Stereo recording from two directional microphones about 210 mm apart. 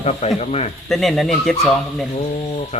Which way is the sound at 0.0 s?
30° left (ahead or behind).